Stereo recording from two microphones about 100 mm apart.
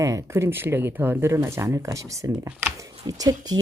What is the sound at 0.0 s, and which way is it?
A woman's voice, 35° right (ahead or behind).